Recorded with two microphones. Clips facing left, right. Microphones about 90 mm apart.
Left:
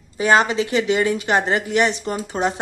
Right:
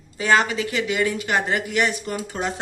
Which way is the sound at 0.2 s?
20° left (ahead or behind).